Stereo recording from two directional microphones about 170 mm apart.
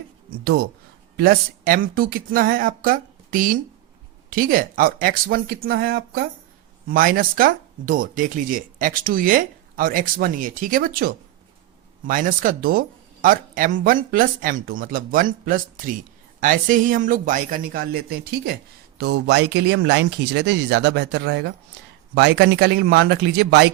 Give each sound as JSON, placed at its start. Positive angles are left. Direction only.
{"t": 1.1, "sound": "speech", "side_deg": -60}
{"t": 6.8, "sound": "a man's voice", "side_deg": -55}
{"t": 18.9, "sound": "speech", "side_deg": -85}